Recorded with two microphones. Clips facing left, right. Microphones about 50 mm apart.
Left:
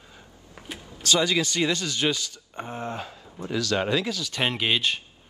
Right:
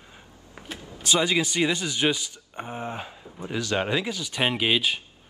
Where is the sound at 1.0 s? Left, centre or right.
Right.